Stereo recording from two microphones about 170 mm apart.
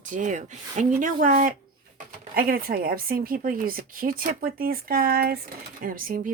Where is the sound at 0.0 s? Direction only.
50° right (ahead or behind).